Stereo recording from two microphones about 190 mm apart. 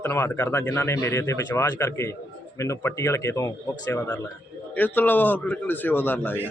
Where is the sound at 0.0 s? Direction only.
10° left (ahead or behind).